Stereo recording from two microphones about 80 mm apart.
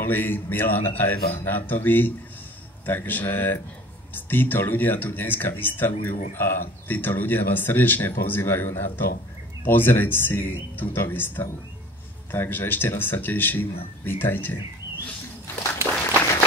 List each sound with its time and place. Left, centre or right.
0.0 s speech: left